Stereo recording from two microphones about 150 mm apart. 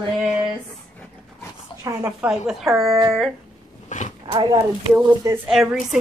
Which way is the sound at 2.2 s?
5° right (ahead or behind).